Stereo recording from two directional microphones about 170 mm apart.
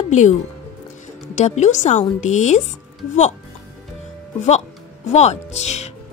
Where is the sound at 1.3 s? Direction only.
45° left (ahead or behind).